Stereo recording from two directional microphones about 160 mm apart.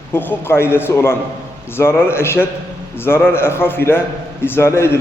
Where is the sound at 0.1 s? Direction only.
15° left (ahead or behind).